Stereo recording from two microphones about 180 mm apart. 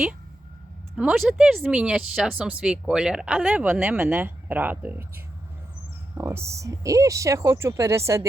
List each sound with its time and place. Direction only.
0.9 s speech: 5° right (ahead or behind)